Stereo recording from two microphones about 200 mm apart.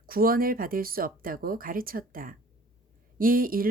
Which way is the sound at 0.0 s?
45° right (ahead or behind).